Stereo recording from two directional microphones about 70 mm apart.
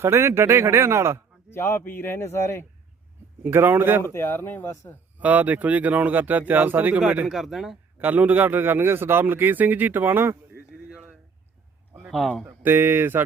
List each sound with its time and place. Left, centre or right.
0.0 s speech: right
1.5 s speech: left
3.5 s speech: right
4.0 s speech: left
5.2 s a man's voice: right
7.3 s speech: centre
7.9 s a man's voice: right
10.7 s a sound: centre
12.1 s speech: centre
12.5 s speech: right